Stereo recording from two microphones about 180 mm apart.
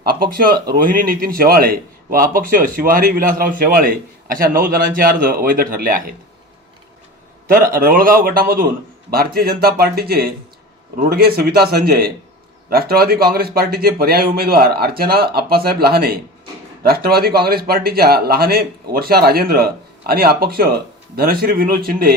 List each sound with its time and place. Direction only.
0.0 s a man's voice: 55° right (ahead or behind)
7.4 s speech: 55° right (ahead or behind)